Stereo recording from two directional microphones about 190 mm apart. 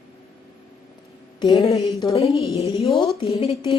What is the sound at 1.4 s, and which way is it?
A woman's voice, 25° left (ahead or behind).